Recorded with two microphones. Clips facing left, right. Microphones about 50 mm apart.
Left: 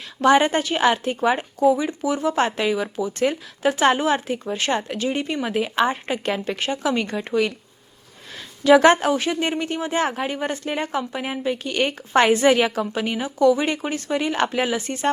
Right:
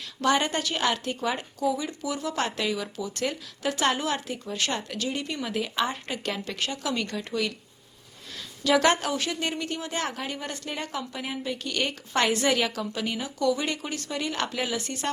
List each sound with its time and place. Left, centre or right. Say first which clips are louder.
0.2 s a woman's voice: left 8 dB; left
8.6 s a woman's voice: left 8 dB; left